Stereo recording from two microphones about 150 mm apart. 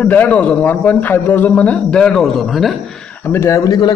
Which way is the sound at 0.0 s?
10° left (ahead or behind).